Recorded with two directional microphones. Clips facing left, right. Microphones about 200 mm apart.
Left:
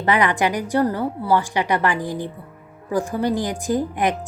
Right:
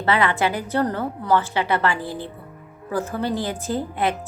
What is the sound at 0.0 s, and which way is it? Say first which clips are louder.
Speech: left 1 dB; 15° left (ahead or behind).